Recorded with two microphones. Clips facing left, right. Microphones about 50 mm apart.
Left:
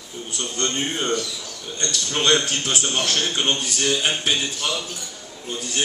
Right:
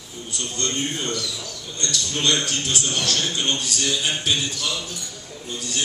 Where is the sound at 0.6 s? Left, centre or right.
Left.